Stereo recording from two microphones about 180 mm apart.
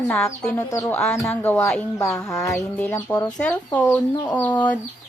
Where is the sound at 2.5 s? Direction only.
5° left (ahead or behind).